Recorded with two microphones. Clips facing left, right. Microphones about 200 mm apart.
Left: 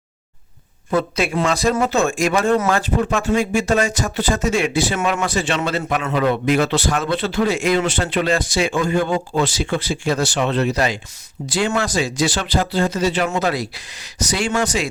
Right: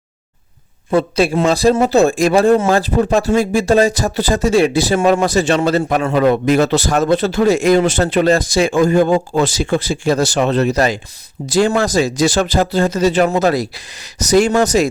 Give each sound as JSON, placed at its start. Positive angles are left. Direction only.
{"t": 0.9, "sound": "a man's voice", "side_deg": -30}